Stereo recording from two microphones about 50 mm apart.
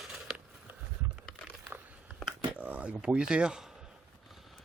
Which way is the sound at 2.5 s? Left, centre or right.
Right.